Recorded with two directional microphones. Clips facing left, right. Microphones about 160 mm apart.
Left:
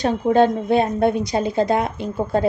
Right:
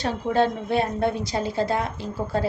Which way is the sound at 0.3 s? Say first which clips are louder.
Left 5 dB; 20° left (ahead or behind).